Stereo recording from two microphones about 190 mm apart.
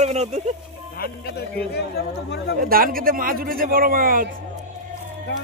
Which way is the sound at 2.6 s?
50° right (ahead or behind).